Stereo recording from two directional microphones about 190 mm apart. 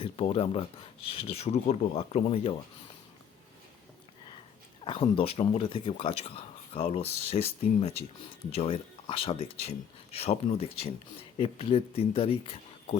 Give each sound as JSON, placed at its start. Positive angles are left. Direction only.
{"t": 0.0, "sound": "speech", "side_deg": 30}
{"t": 4.9, "sound": "speech", "side_deg": 30}